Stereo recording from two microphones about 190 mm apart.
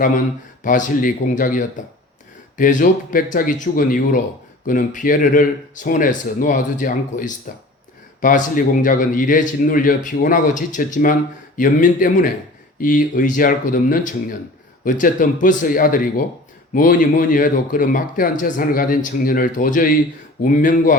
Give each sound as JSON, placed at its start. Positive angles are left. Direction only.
{"t": 0.6, "sound": "speech", "side_deg": 45}